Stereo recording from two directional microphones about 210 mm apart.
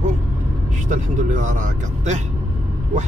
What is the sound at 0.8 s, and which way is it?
Speech, 35° right (ahead or behind).